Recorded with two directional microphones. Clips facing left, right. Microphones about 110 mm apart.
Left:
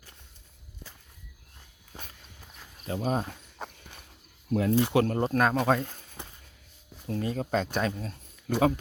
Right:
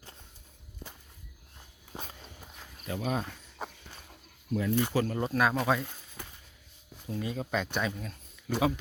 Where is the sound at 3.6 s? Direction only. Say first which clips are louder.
Right 1 dB; 5° right (ahead or behind).